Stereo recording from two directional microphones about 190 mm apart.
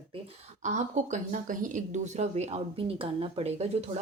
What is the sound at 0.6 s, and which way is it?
Speech, 40° right (ahead or behind).